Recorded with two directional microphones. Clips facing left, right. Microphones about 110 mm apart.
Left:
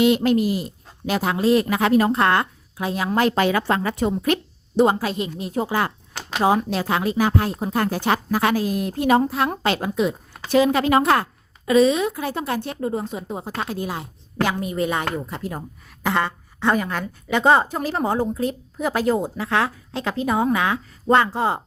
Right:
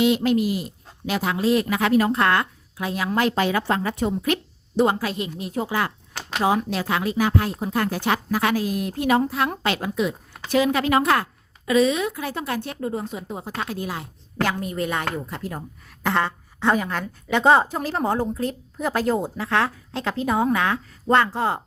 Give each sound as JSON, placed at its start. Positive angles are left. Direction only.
{"t": 0.0, "sound": "speech", "side_deg": 45}
{"t": 3.3, "sound": "a woman's voice", "side_deg": 80}
{"t": 4.8, "sound": "a woman's voice", "side_deg": 25}
{"t": 16.0, "sound": "a woman's voice", "side_deg": 0}